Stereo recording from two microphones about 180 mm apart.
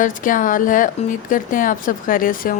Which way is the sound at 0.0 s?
50° left (ahead or behind).